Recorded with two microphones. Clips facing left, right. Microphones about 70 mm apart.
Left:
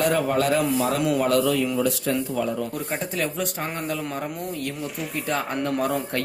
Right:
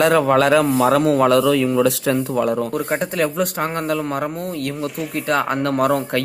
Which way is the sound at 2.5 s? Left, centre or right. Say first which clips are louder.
Right 7 dB; right.